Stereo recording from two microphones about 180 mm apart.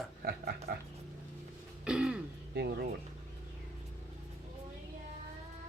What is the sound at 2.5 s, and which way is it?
Speech, 65° right (ahead or behind).